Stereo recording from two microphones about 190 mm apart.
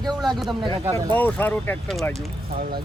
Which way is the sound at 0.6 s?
25° right (ahead or behind).